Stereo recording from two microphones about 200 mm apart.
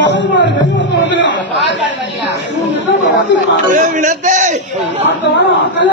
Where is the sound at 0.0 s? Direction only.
65° left (ahead or behind).